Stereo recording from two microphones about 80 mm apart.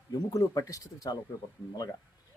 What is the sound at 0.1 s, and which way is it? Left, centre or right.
Speech, left.